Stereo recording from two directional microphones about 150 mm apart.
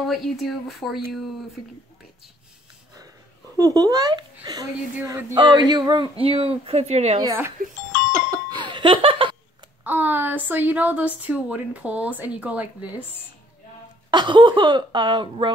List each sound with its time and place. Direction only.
0.0 s speech: centre (ahead or behind)
3.5 s speech: 25° right (ahead or behind); by 7.2 s 45° right (ahead or behind)
7.6 s speech: 70° right (ahead or behind)
8.1 s music: 25° right (ahead or behind)
9.8 s a woman's voice: 15° right (ahead or behind)
14.1 s speech: 30° right (ahead or behind)